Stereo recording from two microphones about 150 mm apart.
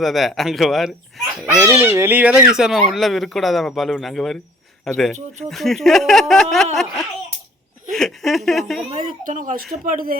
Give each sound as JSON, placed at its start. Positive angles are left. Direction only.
{"t": 0.0, "sound": "speech", "side_deg": 0}
{"t": 1.5, "sound": "speech", "side_deg": -15}
{"t": 7.9, "sound": "speech", "side_deg": 0}
{"t": 9.0, "sound": "speech", "side_deg": -60}